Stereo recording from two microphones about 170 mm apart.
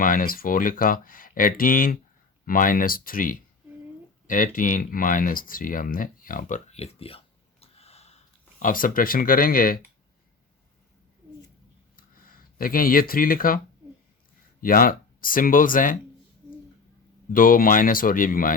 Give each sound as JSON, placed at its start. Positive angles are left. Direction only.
{"t": 0.0, "sound": "speech", "side_deg": 55}
{"t": 8.5, "sound": "speech", "side_deg": 55}
{"t": 11.9, "sound": "a sound", "side_deg": 55}
{"t": 14.6, "sound": "speech", "side_deg": 55}
{"t": 17.3, "sound": "speech", "side_deg": 55}